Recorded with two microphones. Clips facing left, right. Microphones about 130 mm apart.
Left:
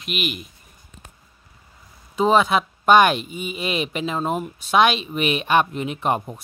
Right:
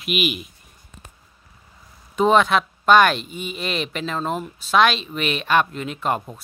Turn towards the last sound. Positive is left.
turn(degrees=15)  # may be behind; listen again after turning